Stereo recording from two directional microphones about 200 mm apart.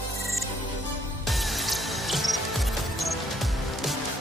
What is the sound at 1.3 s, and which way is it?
Music, centre (ahead or behind).